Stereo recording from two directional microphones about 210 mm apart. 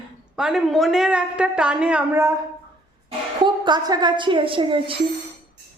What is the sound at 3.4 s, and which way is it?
A woman's voice, 20° right (ahead or behind).